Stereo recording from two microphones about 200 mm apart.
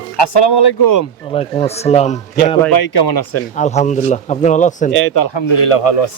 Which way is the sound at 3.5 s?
35° left (ahead or behind).